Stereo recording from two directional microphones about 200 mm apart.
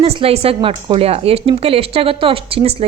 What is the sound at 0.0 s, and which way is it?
Speech, 30° right (ahead or behind).